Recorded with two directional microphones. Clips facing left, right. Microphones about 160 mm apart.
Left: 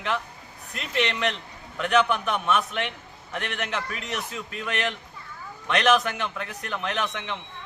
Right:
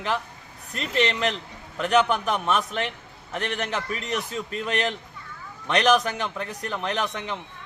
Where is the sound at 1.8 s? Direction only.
35° right (ahead or behind).